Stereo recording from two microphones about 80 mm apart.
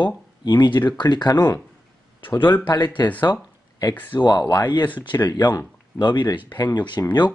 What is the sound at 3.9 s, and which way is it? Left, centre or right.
Speech, left.